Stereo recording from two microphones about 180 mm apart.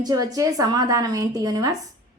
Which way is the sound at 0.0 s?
20° right (ahead or behind).